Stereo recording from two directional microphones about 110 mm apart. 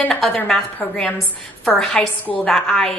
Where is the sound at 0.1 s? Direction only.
5° left (ahead or behind).